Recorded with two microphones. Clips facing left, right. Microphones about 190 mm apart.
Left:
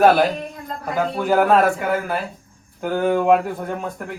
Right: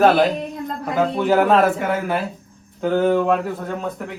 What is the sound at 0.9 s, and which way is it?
A man's voice, centre (ahead or behind).